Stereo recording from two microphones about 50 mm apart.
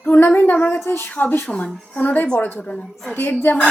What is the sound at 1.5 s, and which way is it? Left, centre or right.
Speech, left.